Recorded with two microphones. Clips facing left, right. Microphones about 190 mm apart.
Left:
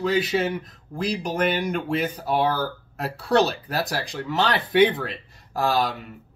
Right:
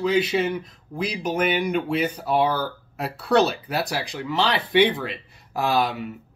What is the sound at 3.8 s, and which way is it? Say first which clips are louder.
Speech: even; centre (ahead or behind).